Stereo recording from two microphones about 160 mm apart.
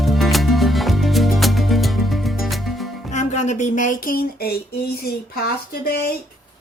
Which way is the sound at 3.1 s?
50° left (ahead or behind).